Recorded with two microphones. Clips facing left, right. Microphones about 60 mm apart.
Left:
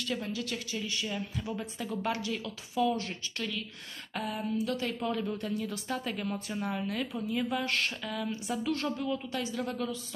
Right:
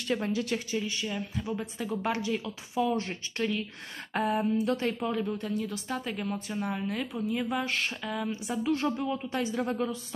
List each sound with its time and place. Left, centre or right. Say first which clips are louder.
0.0 s speech: right 5 dB; right
0.7 s speech: right 3 dB; centre
2.2 s speech: right 4 dB; centre
4.1 s a sound: right 6 dB; right
5.0 s speech: right 2 dB; centre; by 9.9 s right